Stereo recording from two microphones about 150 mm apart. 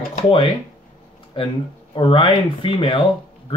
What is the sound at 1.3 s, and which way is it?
Speech, 35° left (ahead or behind).